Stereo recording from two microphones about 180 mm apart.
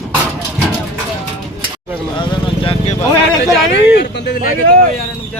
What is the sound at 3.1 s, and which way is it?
Speech, 10° left (ahead or behind).